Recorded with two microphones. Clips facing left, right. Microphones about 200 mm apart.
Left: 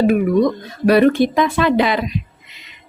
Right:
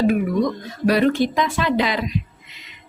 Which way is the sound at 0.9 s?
60° left (ahead or behind).